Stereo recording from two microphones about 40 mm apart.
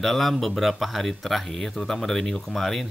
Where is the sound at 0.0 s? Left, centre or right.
Centre.